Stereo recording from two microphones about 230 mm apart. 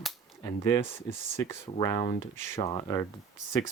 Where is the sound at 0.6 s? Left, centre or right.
Centre.